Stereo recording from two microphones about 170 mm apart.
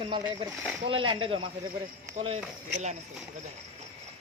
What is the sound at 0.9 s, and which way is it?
Speech, 30° right (ahead or behind).